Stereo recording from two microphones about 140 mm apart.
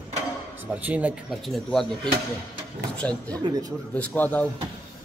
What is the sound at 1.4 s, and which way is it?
Speech, centre (ahead or behind).